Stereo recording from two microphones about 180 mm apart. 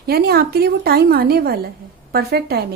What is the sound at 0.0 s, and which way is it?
A woman's voice, 60° right (ahead or behind).